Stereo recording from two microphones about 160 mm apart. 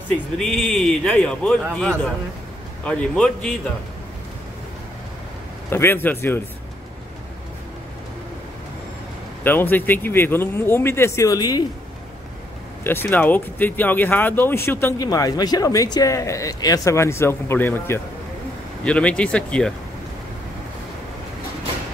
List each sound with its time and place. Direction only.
0.1 s speech: centre (ahead or behind)
5.7 s speech: 15° left (ahead or behind)
9.4 s speech: 10° left (ahead or behind)
12.8 s speech: 15° left (ahead or behind)